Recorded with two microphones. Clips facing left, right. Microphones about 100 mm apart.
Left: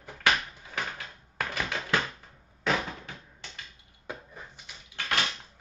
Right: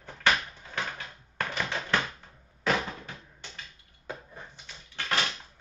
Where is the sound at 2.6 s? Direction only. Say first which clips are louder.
Right 1 dB; centre (ahead or behind).